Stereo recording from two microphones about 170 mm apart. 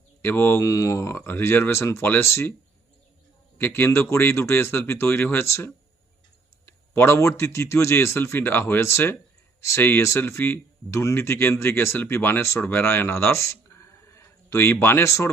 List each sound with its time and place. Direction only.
0.2 s speech: 15° left (ahead or behind)
3.6 s speech: 15° left (ahead or behind)